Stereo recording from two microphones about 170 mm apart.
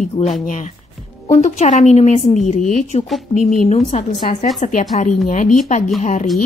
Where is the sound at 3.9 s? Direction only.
40° left (ahead or behind).